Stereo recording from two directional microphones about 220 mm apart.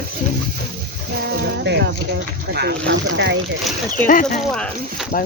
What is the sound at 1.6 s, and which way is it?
Speech, 50° right (ahead or behind).